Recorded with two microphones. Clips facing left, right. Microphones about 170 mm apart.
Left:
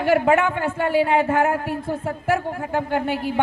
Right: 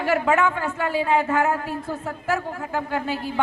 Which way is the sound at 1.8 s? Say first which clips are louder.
Left 4 dB; 25° left (ahead or behind).